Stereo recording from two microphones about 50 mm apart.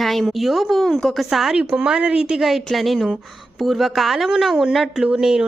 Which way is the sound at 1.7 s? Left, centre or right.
Right.